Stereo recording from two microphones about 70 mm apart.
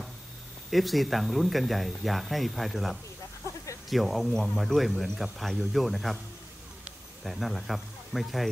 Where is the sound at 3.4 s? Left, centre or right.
Left.